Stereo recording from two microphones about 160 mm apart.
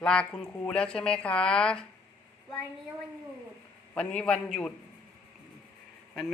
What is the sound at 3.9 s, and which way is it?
Speech, 5° left (ahead or behind).